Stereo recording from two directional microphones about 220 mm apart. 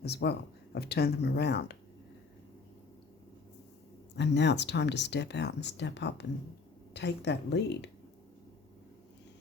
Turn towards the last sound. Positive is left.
turn(degrees=50)  # may be behind; listen again after turning